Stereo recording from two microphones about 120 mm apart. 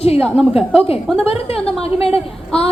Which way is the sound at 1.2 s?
55° left (ahead or behind).